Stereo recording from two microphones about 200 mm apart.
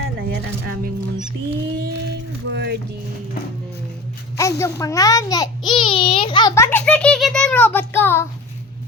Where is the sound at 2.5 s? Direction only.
60° right (ahead or behind).